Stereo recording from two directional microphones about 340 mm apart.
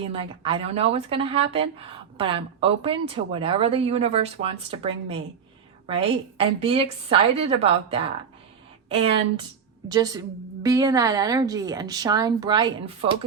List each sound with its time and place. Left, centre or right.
0.1 s a woman's voice: centre